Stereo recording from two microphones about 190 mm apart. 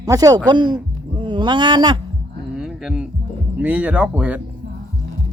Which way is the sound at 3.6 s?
5° right (ahead or behind).